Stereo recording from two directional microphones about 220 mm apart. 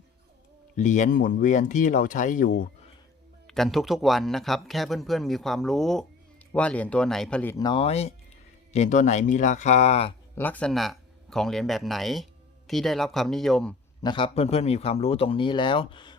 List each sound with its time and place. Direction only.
0.8 s speech: 35° left (ahead or behind)
3.4 s speech: centre (ahead or behind); by 10.2 s 25° left (ahead or behind)
10.3 s speech: 10° left (ahead or behind)
14.0 s speech: 20° left (ahead or behind)